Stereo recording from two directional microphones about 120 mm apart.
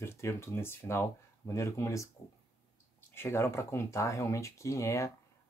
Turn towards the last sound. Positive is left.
turn(degrees=25)  # may be behind; listen again after turning